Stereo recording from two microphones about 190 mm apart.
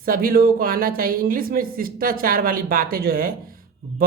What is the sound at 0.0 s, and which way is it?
Speech, 50° right (ahead or behind).